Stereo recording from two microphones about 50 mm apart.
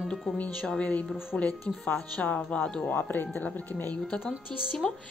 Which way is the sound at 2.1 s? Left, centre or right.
Left.